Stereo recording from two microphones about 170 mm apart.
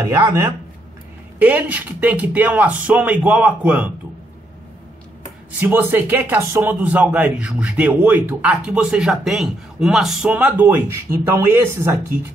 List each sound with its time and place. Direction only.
0.0 s a man's voice: 20° right (ahead or behind)
5.6 s a man's voice: 10° right (ahead or behind)